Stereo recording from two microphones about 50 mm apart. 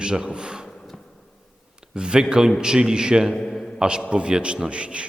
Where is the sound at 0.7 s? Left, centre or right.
Centre.